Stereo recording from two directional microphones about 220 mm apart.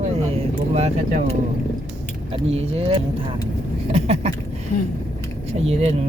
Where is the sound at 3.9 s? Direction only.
30° right (ahead or behind).